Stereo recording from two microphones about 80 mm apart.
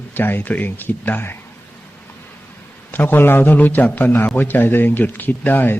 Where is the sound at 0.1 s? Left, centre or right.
Left.